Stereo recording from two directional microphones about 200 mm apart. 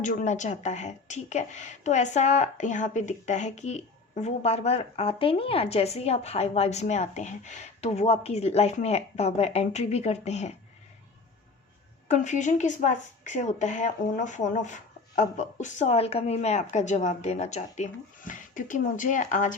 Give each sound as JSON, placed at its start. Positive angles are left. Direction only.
{"t": 0.0, "sound": "speech", "side_deg": 40}
{"t": 12.0, "sound": "speech", "side_deg": 35}